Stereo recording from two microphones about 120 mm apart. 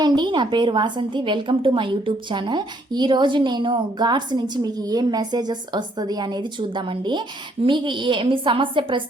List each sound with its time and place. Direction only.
0.0 s a woman's voice: 40° right (ahead or behind)